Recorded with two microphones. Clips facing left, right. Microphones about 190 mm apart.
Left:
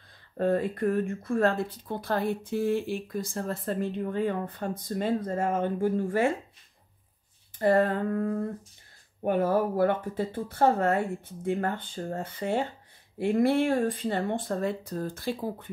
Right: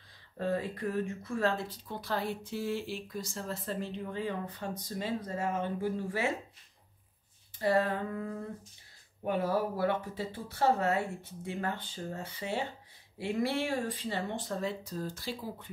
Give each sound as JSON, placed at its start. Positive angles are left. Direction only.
{"t": 0.4, "sound": "speech", "side_deg": 55}
{"t": 7.5, "sound": "speech", "side_deg": 50}